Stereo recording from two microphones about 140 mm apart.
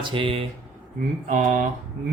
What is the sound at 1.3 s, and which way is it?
Speech, 65° right (ahead or behind).